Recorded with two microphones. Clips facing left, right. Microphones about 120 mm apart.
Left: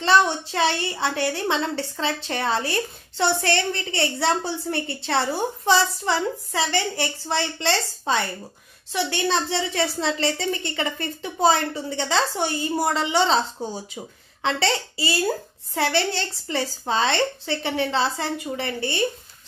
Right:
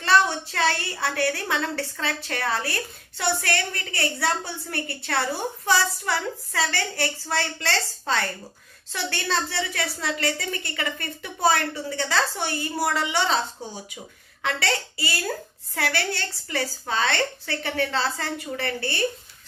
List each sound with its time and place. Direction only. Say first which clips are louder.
0.0 s a woman's voice: left 2 dB; 20° left (ahead or behind)